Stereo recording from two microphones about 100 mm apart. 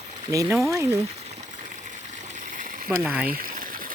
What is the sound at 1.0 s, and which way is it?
Boiling, 90° right.